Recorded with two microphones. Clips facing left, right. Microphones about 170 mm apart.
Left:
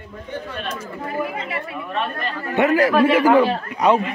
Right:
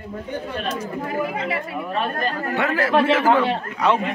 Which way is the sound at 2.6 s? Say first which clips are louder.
Left 5 dB; 15° left (ahead or behind).